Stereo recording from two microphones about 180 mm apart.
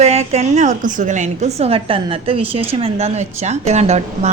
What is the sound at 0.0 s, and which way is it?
A woman's voice, 35° right (ahead or behind).